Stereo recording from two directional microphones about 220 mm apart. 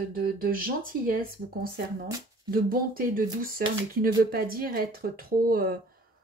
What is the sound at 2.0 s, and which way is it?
Speech, 15° right (ahead or behind).